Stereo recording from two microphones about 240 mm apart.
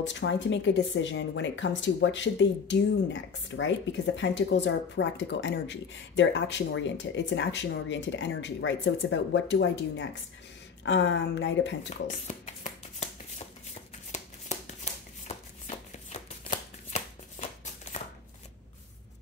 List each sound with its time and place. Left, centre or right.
0.0 s speech: left
12.3 s shuffling cards: left
14.5 s shuffling cards: left
14.9 s a sound: left
15.2 s shuffling cards: left